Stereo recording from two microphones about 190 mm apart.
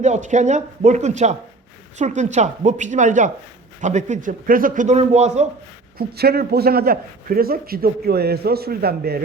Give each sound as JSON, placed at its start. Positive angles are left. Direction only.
{"t": 0.0, "sound": "a man's voice", "side_deg": -40}
{"t": 6.0, "sound": "speech", "side_deg": -55}